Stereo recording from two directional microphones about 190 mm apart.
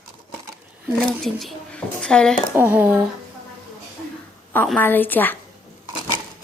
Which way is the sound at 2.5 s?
10° right (ahead or behind).